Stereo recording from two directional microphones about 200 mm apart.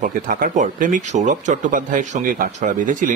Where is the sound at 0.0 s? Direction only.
40° right (ahead or behind).